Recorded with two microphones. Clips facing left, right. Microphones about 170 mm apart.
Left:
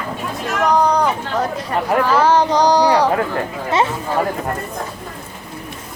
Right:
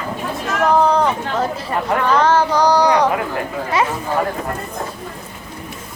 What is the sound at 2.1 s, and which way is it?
Child singing, 5° left (ahead or behind).